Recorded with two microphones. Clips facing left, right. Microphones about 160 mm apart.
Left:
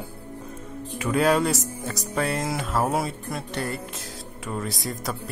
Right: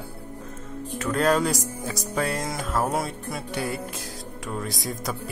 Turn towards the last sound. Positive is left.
turn(degrees=0)  # may be behind; listen again after turning